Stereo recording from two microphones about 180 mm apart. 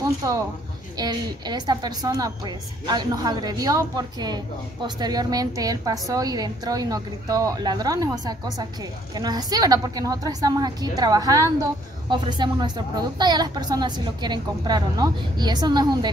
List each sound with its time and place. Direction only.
0.9 s a woman's voice: 25° right (ahead or behind)